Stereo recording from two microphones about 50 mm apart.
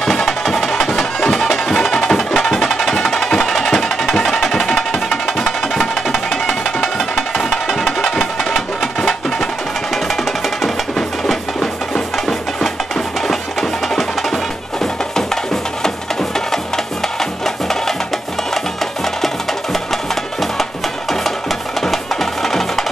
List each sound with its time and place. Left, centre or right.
0.0 s music: centre
19.2 s music: centre